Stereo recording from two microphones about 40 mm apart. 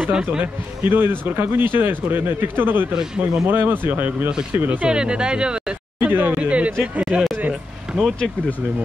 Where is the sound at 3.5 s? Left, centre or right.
Right.